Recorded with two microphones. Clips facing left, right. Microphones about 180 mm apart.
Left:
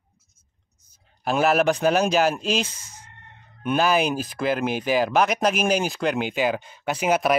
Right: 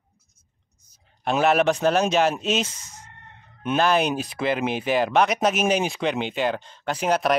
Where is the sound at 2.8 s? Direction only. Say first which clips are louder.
Right 2 dB; 20° right (ahead or behind).